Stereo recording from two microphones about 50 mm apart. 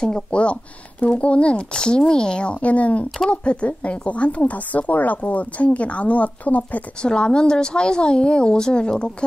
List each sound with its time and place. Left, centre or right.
0.0 s speech: centre
7.0 s speech: centre